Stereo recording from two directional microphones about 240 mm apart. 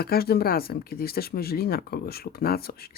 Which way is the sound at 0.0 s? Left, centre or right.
Left.